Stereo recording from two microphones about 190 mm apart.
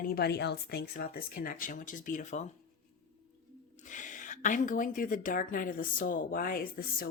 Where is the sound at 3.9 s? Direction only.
40° left (ahead or behind).